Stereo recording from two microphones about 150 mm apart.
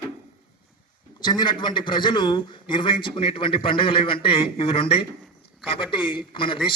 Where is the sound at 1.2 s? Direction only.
30° left (ahead or behind).